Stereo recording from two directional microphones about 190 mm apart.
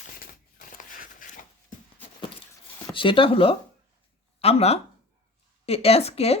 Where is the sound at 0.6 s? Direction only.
45° left (ahead or behind).